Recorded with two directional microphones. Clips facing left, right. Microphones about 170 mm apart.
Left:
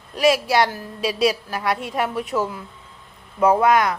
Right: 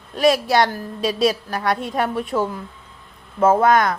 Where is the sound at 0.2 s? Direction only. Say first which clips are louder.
Right 1 dB; 5° left (ahead or behind).